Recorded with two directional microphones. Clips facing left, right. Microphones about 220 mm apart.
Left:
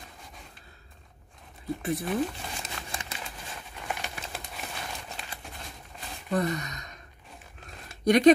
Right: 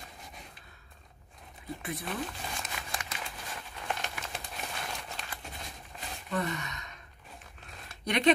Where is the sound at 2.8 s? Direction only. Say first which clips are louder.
Left 2 dB; 10° right (ahead or behind).